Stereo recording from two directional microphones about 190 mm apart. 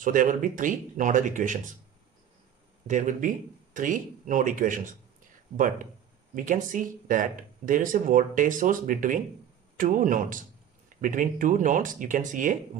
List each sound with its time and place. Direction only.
0.0 s speech: 45° right (ahead or behind)
2.9 s speech: 40° right (ahead or behind)
6.3 s speech: 45° right (ahead or behind)